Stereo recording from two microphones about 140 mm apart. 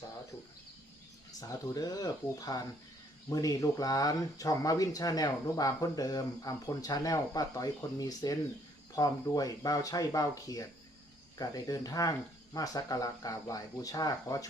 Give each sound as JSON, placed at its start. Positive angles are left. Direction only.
{"t": 1.4, "sound": "speech", "side_deg": 25}